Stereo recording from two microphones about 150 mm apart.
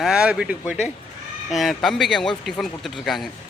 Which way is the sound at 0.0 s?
5° right (ahead or behind).